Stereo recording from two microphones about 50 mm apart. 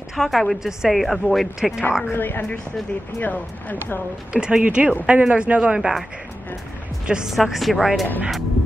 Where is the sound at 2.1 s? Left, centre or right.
Left.